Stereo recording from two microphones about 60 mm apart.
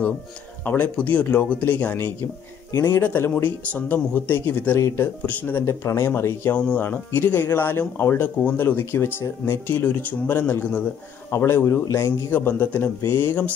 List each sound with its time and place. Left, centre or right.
0.7 s speech: left
4.7 s a man's voice: left
5.2 s speech: left
5.7 s a man's voice: left
12.3 s speech: left